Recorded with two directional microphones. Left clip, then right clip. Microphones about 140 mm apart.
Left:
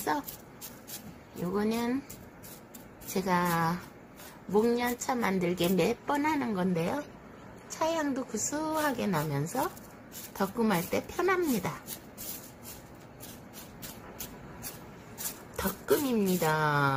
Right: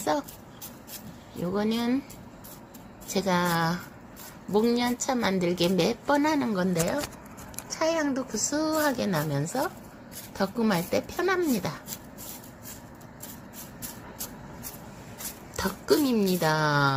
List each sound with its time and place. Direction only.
1.4 s a woman's voice: 30° right (ahead or behind)
3.1 s a woman's voice: 30° right (ahead or behind)
15.5 s speech: 35° right (ahead or behind)